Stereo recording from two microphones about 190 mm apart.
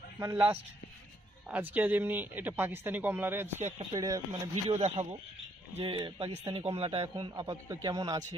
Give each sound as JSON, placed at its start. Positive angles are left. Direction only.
{"t": 0.2, "sound": "a man's voice", "side_deg": -15}
{"t": 4.3, "sound": "a man's voice", "side_deg": -35}